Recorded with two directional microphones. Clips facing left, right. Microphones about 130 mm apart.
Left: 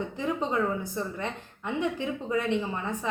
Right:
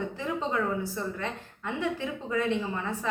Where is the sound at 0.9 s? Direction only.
20° left (ahead or behind).